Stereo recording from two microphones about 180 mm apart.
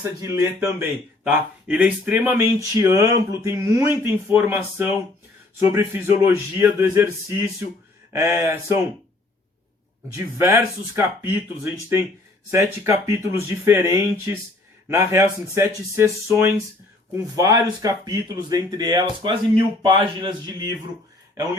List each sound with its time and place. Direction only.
0.0 s speech: 15° right (ahead or behind)
10.2 s speech: 15° right (ahead or behind)